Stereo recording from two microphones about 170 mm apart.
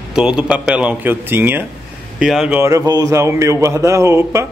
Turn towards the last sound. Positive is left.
turn(degrees=-15)  # may be behind; listen again after turning